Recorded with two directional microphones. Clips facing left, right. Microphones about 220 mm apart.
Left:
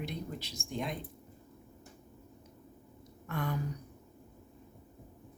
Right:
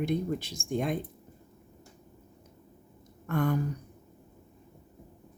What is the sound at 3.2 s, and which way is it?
Speech, 50° right (ahead or behind).